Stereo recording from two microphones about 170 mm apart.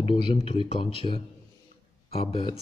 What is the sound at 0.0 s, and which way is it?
Speech, 30° left (ahead or behind).